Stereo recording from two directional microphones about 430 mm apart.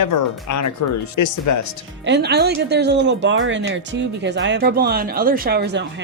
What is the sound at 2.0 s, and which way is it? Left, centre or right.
Speech, right.